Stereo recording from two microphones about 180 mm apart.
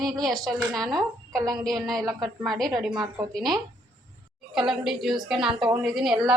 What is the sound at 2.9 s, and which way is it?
Speech, 20° right (ahead or behind).